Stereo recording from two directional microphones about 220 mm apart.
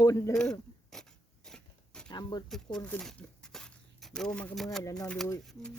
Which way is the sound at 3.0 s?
Centre (ahead or behind).